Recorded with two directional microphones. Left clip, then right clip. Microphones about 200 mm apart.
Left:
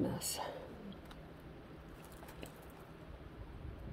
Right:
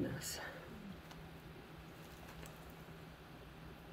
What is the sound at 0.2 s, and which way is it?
Whispering, 25° left (ahead or behind).